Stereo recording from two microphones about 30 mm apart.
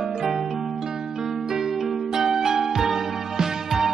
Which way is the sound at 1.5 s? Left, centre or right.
Centre.